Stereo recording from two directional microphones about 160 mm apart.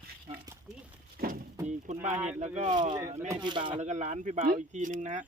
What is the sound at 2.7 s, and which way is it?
Speech, 25° right (ahead or behind).